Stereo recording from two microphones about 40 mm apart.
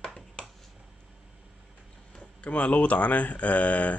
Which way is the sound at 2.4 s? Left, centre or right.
Left.